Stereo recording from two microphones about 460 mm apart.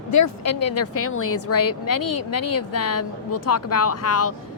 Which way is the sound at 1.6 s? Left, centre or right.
Left.